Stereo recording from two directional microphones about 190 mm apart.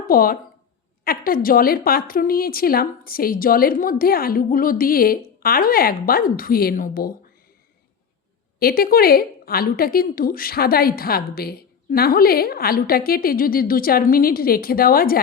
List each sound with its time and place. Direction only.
0.1 s a woman's voice: 50° left (ahead or behind)
8.5 s a woman's voice: 50° left (ahead or behind)